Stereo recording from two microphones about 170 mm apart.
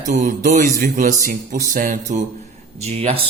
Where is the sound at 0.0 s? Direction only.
45° right (ahead or behind).